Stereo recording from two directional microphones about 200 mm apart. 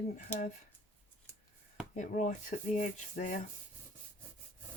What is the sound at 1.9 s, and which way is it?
Rub, 40° left (ahead or behind).